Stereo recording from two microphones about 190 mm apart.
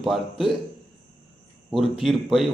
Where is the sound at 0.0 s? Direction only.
Centre (ahead or behind).